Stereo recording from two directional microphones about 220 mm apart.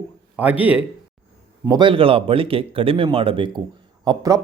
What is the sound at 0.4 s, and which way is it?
Speech, 5° right (ahead or behind).